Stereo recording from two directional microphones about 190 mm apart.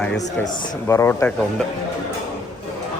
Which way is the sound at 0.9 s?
15° left (ahead or behind).